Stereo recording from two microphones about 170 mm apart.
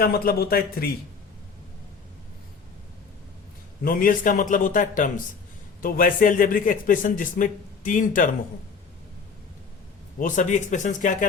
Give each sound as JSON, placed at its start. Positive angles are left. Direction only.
{"t": 0.0, "sound": "a man's voice", "side_deg": 65}
{"t": 3.8, "sound": "a man's voice", "side_deg": 55}
{"t": 10.2, "sound": "a man's voice", "side_deg": 50}